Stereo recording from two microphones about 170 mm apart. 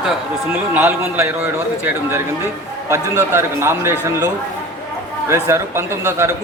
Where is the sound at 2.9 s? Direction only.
15° right (ahead or behind).